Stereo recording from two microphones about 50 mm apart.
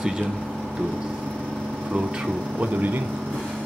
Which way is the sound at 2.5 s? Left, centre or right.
Right.